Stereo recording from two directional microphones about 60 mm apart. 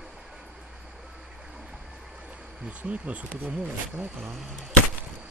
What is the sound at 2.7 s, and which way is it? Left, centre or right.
Speech, right.